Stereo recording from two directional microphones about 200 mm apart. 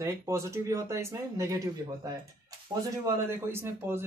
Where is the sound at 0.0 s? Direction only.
15° right (ahead or behind).